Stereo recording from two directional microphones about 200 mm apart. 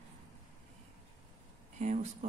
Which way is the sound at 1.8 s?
35° right (ahead or behind).